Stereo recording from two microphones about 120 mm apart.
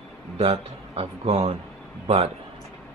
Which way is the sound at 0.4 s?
55° right (ahead or behind).